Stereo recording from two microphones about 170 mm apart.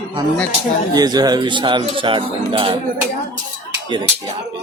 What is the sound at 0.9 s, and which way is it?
Speech, 25° right (ahead or behind).